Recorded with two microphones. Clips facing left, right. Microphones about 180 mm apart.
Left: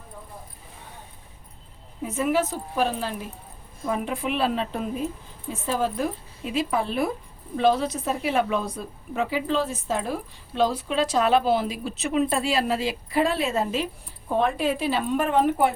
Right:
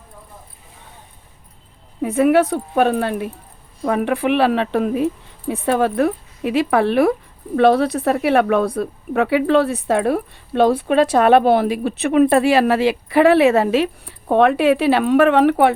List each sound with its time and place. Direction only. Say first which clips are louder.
2.0 s a woman's voice: right 9 dB; 65° right (ahead or behind)